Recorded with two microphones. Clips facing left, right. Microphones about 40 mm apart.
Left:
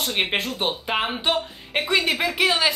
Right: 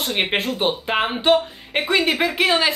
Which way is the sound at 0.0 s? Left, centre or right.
Centre.